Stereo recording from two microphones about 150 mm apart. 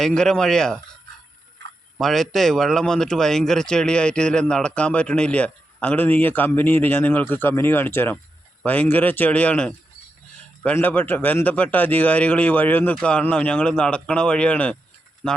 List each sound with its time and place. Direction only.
0.0 s speech: 5° left (ahead or behind)
2.0 s speech: centre (ahead or behind)